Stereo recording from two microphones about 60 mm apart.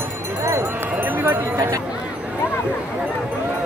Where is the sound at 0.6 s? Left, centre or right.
Right.